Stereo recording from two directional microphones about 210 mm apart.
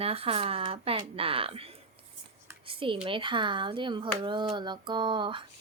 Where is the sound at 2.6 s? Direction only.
25° right (ahead or behind).